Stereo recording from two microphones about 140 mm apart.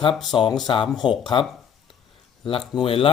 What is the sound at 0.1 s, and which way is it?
Speech, centre (ahead or behind).